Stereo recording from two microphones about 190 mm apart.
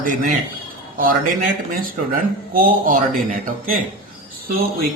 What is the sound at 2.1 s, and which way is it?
A man's voice, 45° right (ahead or behind).